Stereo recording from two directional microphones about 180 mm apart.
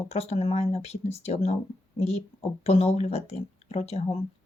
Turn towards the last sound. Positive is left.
turn(degrees=35)  # may be behind; listen again after turning